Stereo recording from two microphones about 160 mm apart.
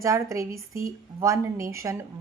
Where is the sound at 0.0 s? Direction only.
20° right (ahead or behind).